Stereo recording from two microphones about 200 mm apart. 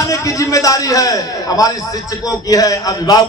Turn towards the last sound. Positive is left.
turn(degrees=20)  # may be behind; listen again after turning